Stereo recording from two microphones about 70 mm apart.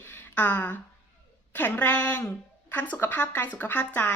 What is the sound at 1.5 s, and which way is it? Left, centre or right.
Speech, left.